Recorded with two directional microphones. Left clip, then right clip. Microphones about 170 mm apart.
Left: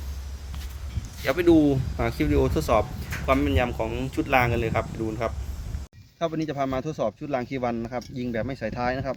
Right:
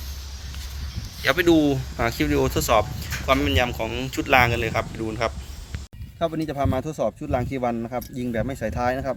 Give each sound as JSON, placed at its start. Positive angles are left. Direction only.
{"t": 1.2, "sound": "speech", "side_deg": 5}